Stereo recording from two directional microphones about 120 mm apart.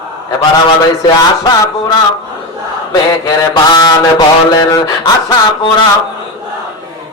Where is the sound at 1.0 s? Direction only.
35° left (ahead or behind).